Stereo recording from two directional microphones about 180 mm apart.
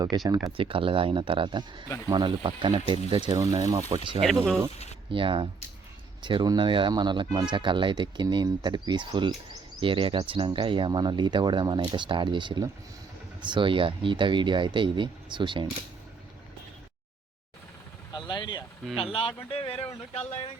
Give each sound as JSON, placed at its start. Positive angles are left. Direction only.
{"t": 0.3, "sound": "speech", "side_deg": -25}
{"t": 18.1, "sound": "vehicle", "side_deg": 25}
{"t": 18.9, "sound": "speech", "side_deg": 30}